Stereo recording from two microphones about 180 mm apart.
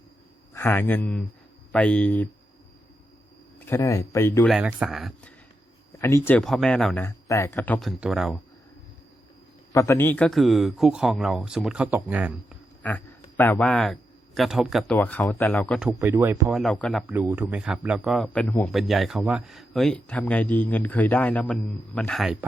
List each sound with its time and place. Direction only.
0.5 s speech: 10° left (ahead or behind)
3.7 s speech: 15° left (ahead or behind)
4.4 s speech: 5° right (ahead or behind)
6.0 s speech: 15° left (ahead or behind)
6.4 s speech: centre (ahead or behind)
9.7 s speech: 15° left (ahead or behind); by 12.3 s 10° right (ahead or behind)
12.8 s a man's voice: 10° left (ahead or behind)
15.8 s speech: 10° right (ahead or behind)
16.5 s speech: centre (ahead or behind)
17.1 s speech: 10° right (ahead or behind)